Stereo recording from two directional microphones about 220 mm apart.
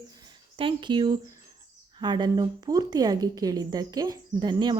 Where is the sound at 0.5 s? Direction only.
20° right (ahead or behind).